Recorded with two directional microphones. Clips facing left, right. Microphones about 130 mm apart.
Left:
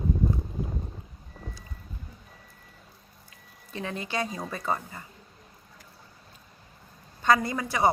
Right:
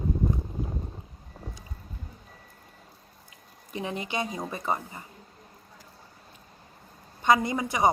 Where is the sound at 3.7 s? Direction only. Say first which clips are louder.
Right 1 dB; 20° right (ahead or behind).